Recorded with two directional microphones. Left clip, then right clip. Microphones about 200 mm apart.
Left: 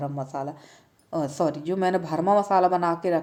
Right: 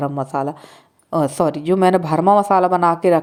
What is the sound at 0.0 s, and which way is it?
Speech, 35° right (ahead or behind).